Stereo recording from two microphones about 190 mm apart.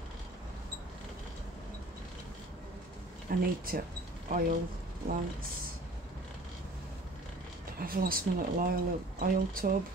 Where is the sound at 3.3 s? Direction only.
45° right (ahead or behind).